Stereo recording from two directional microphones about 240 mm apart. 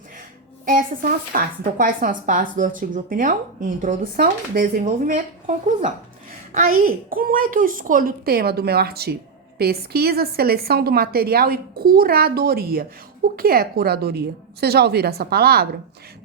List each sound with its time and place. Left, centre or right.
0.6 s speech: right